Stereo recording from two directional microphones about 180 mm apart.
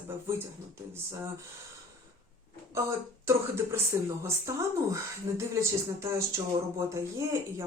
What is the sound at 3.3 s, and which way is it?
Speech, 15° right (ahead or behind).